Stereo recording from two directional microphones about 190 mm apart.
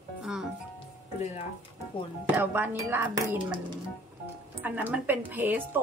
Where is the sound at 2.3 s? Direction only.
10° right (ahead or behind).